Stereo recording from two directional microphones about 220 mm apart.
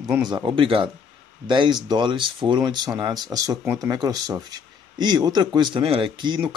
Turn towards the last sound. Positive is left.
turn(degrees=-20)  # may be behind; listen again after turning